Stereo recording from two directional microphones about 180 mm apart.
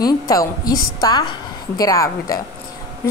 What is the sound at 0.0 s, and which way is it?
A woman's voice, 20° left (ahead or behind).